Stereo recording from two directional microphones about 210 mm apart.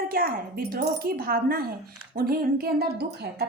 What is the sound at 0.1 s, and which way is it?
A woman's voice, 45° right (ahead or behind).